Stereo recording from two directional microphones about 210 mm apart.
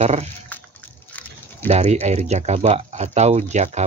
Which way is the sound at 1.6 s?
30° right (ahead or behind).